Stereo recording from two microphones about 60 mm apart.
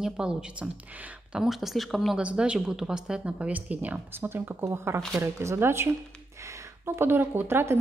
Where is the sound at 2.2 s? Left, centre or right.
Centre.